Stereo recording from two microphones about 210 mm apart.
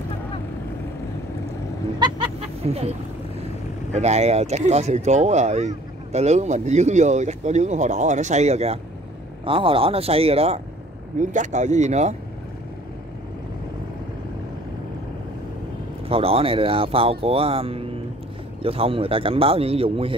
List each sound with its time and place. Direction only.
2.0 s a sound: 25° right (ahead or behind)
3.9 s speech: 30° right (ahead or behind)
16.1 s speech: 25° right (ahead or behind)